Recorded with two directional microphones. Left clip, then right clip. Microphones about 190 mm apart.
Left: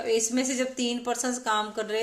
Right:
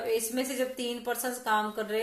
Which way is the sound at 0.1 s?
35° left (ahead or behind).